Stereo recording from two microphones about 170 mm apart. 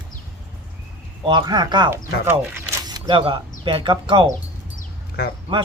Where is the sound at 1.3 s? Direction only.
25° right (ahead or behind).